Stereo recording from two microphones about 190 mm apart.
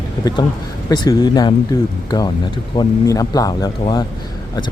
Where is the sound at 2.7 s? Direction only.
20° left (ahead or behind).